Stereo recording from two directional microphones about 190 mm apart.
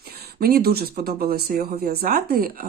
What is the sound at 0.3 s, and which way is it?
Speech, 50° right (ahead or behind).